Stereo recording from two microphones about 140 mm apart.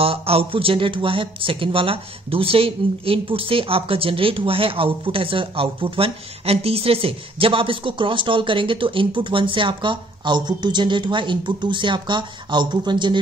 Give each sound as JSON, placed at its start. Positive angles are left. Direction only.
{"t": 0.0, "sound": "speech", "side_deg": -45}